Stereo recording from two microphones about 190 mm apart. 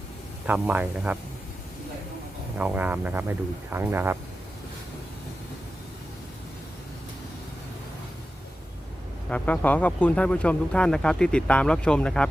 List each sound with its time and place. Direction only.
0.4 s speech: 10° right (ahead or behind)
2.6 s speech: 10° right (ahead or behind)
9.3 s speech: 10° left (ahead or behind)